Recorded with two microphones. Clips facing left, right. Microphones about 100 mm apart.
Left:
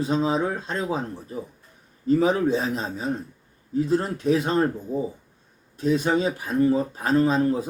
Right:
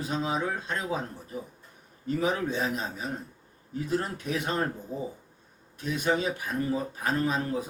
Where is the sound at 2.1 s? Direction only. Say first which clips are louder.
Left 8 dB; 30° left (ahead or behind).